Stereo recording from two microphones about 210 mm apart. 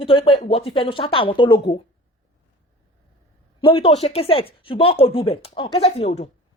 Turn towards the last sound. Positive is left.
turn(degrees=30)  # may be behind; listen again after turning